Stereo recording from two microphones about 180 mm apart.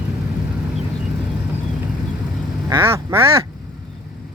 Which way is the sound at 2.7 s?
15° right (ahead or behind).